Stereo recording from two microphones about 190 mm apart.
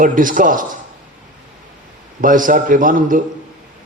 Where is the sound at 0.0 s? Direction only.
45° right (ahead or behind).